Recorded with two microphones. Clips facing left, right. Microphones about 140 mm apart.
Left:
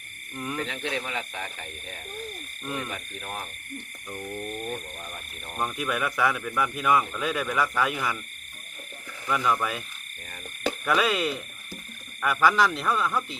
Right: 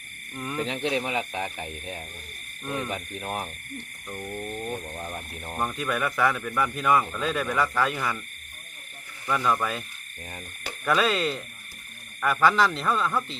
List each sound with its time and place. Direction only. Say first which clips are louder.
0.3 s speech: even; 5° right (ahead or behind)
0.6 s speech: right 8 dB; 20° right (ahead or behind)
5.5 s speech: right 1 dB; 5° left (ahead or behind)
9.3 s speech: right 1 dB; centre (ahead or behind)
10.8 s speech: right 2 dB; 5° left (ahead or behind)